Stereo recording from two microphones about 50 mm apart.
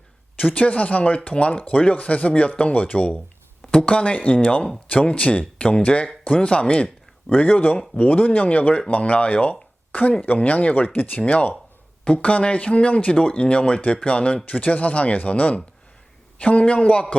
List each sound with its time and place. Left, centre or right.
0.3 s speech: left
7.3 s speech: left
12.0 s speech: left